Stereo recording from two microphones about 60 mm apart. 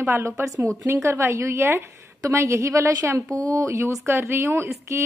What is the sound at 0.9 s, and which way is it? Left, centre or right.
A woman's voice, right.